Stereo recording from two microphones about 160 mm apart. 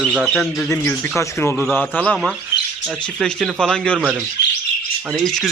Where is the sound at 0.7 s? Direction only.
15° left (ahead or behind).